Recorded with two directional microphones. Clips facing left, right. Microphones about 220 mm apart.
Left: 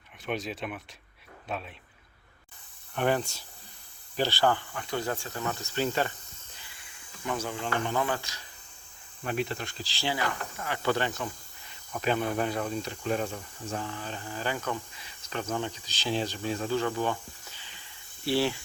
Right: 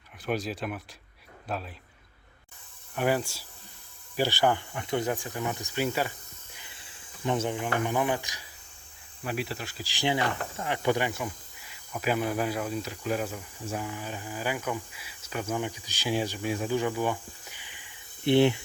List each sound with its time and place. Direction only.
0.3 s speech: centre (ahead or behind)
2.9 s speech: 5° right (ahead or behind)
6.6 s speech: 25° right (ahead or behind)
9.2 s speech: 5° right (ahead or behind); by 18.6 s 20° right (ahead or behind)